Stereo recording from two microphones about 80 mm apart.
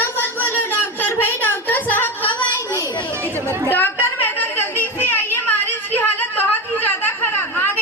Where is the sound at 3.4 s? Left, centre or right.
Right.